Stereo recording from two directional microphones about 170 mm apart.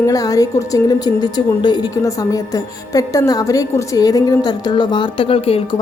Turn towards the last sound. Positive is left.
turn(degrees=35)  # may be behind; listen again after turning